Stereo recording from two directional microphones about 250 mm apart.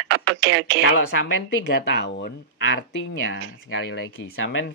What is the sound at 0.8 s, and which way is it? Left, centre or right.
Speech, left.